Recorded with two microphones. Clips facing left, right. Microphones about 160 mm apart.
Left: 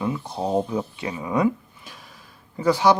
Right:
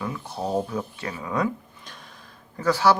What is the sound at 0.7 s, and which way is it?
Speech, 15° left (ahead or behind).